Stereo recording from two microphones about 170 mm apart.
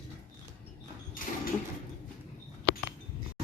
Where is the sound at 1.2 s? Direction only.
55° left (ahead or behind).